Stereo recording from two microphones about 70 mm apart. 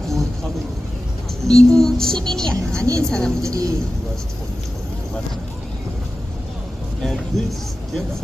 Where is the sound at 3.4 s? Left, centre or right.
Right.